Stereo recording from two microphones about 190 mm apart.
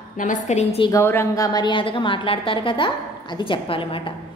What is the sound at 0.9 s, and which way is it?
A woman's voice, 15° left (ahead or behind).